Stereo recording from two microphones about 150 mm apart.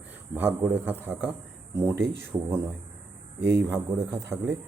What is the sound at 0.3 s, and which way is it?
Speech, 15° right (ahead or behind).